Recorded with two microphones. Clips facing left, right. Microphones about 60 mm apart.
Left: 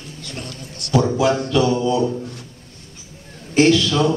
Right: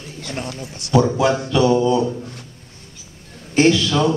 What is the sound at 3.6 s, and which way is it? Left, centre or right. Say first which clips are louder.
Speech: even; centre.